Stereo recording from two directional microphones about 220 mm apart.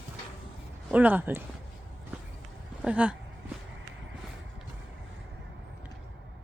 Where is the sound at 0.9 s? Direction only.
5° right (ahead or behind).